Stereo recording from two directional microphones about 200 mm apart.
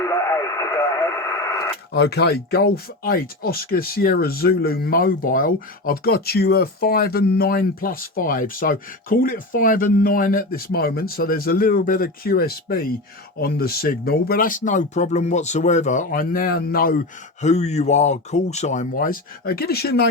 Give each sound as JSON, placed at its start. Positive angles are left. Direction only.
{"t": 0.0, "sound": "radio", "side_deg": 15}
{"t": 1.9, "sound": "speech", "side_deg": 55}